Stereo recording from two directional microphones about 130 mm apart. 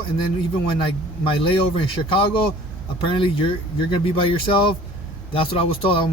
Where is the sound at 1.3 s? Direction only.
45° left (ahead or behind).